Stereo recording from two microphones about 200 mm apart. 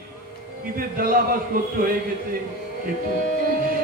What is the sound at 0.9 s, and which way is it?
Speech, 45° right (ahead or behind).